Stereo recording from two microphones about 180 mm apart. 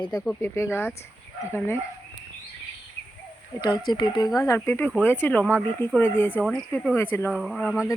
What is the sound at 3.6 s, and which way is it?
Speech, 20° left (ahead or behind).